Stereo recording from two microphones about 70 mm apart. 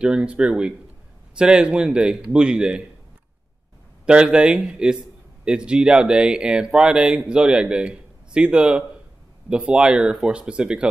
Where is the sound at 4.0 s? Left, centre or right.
Centre.